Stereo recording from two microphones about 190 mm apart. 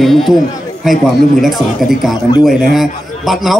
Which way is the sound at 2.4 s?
Centre (ahead or behind).